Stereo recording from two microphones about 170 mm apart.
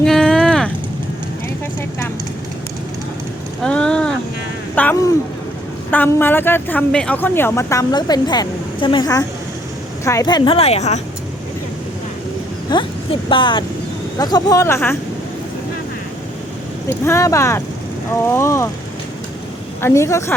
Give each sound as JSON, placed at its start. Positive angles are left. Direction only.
{"t": 0.0, "sound": "a sound", "side_deg": 5}
{"t": 3.6, "sound": "a sound", "side_deg": 5}
{"t": 4.7, "sound": "a woman's voice", "side_deg": 10}
{"t": 12.7, "sound": "speech", "side_deg": 30}
{"t": 16.9, "sound": "speech", "side_deg": 15}
{"t": 19.8, "sound": "speech", "side_deg": 15}